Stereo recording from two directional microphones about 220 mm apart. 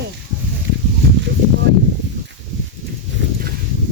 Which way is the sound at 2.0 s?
55° right (ahead or behind).